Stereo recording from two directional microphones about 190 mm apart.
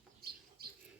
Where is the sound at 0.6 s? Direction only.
55° right (ahead or behind).